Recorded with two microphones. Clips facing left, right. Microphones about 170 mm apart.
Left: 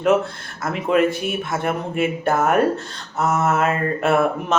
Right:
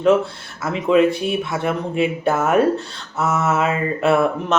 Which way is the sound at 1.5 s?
Centre (ahead or behind).